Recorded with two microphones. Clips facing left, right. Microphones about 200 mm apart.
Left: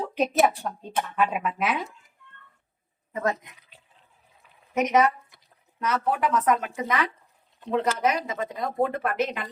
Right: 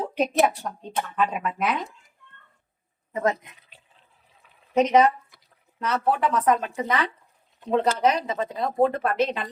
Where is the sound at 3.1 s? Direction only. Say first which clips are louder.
Right 3 dB; 20° right (ahead or behind).